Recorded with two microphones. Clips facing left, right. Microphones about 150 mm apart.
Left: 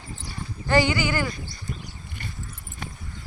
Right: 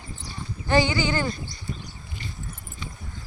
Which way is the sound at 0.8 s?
10° left (ahead or behind).